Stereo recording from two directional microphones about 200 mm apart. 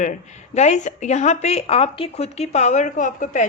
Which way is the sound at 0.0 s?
35° left (ahead or behind).